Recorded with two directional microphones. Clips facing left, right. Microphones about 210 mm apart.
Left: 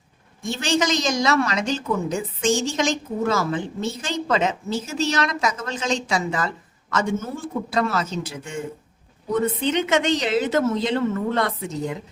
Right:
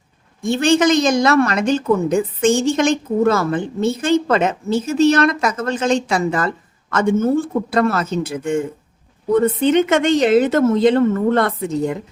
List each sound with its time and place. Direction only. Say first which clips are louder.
0.4 s a woman's voice: right 8 dB; 55° right (ahead or behind)